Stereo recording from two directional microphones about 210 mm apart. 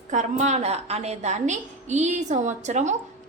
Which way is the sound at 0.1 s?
35° right (ahead or behind).